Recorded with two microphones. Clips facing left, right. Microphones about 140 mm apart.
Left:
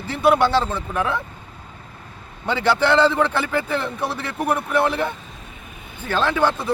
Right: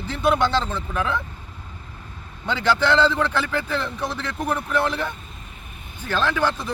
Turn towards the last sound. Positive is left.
turn(degrees=15)  # may be behind; listen again after turning